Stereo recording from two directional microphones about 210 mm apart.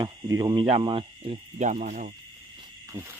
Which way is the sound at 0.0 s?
20° right (ahead or behind).